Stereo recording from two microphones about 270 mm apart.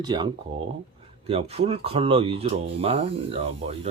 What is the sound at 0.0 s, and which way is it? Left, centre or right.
Speech, centre.